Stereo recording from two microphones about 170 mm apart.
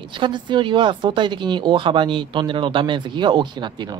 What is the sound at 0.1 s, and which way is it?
Speech, 30° right (ahead or behind).